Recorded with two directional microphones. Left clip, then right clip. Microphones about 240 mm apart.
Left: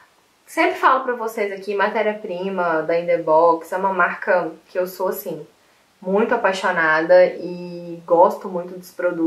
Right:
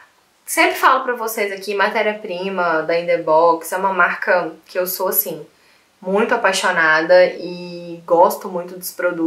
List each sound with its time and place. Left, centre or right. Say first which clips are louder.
0.6 s a woman's voice: right 2 dB; centre
4.9 s speech: right 2 dB; centre
6.0 s speech: right 2 dB; centre
8.4 s a woman's voice: right 2 dB; centre